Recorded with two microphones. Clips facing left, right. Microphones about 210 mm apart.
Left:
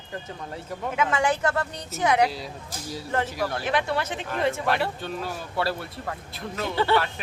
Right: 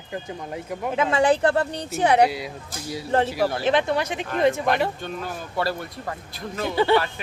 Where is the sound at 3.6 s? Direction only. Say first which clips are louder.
Right 4 dB; 25° right (ahead or behind).